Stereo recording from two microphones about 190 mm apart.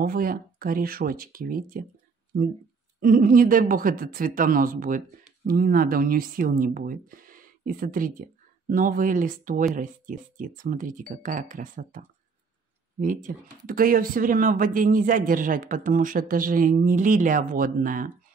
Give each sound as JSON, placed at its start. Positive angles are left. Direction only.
{"t": 0.0, "sound": "speech", "side_deg": -50}
{"t": 3.0, "sound": "speech", "side_deg": -45}